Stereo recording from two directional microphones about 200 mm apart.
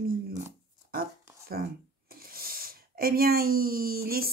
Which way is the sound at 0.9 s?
50° right (ahead or behind).